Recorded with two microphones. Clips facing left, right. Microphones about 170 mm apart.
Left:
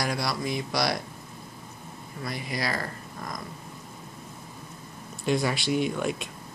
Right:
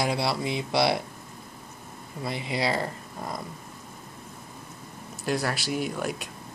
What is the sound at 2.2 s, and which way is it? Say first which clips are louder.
Speech: right 3 dB; 25° right (ahead or behind).